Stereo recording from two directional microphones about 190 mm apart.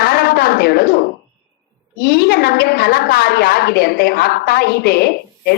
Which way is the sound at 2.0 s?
60° left (ahead or behind).